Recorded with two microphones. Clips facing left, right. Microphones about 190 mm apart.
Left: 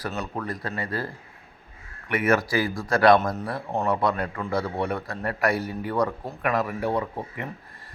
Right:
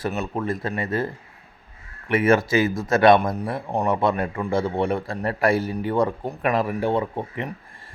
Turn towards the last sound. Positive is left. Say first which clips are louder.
# right 4 dB
turn(degrees=-25)  # may be behind; listen again after turning